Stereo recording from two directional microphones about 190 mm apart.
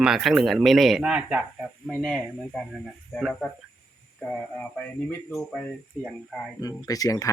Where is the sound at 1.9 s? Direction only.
5° left (ahead or behind).